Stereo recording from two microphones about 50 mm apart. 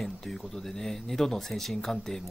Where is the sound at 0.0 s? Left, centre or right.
Centre.